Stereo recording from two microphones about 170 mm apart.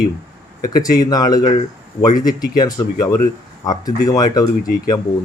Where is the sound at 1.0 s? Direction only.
20° left (ahead or behind).